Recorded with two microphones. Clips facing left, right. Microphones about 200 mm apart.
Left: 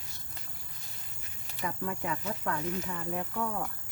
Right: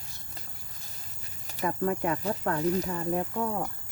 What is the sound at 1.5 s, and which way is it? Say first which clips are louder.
Speech: right 7 dB; 40° right (ahead or behind).